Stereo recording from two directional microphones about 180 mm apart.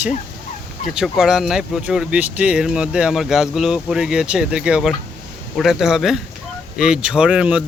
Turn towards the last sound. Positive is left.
turn(degrees=-5)  # may be behind; listen again after turning